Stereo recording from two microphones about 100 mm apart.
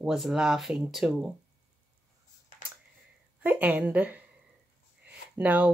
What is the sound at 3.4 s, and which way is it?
Speech, 15° right (ahead or behind).